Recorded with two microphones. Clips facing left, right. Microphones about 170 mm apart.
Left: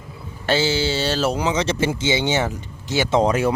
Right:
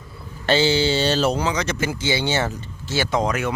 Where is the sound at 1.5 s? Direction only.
25° left (ahead or behind).